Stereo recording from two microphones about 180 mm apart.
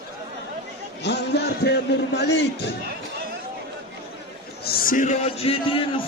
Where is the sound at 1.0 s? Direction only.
70° left (ahead or behind).